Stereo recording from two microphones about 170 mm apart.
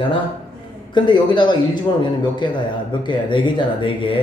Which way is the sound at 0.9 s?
25° left (ahead or behind).